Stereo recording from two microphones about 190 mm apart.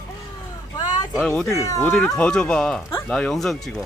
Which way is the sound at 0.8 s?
20° left (ahead or behind).